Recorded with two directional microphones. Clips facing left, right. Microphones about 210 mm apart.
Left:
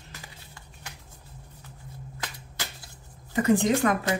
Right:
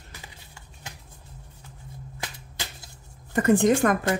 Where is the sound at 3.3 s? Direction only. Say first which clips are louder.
Right 3 dB; 50° right (ahead or behind).